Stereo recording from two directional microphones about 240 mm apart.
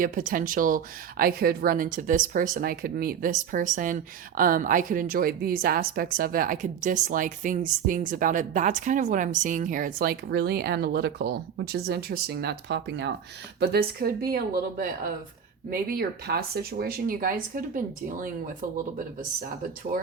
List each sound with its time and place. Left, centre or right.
0.0 s speech: right